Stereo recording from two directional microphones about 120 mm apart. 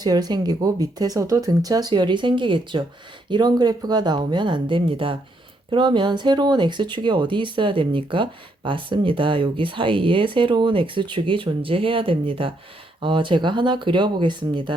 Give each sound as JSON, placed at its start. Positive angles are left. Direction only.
{"t": 0.0, "sound": "speech", "side_deg": -35}